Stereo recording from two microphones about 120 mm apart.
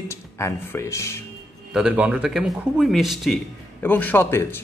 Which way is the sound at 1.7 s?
10° right (ahead or behind).